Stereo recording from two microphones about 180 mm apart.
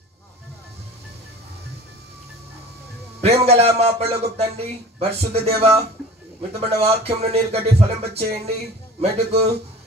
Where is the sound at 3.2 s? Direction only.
35° right (ahead or behind).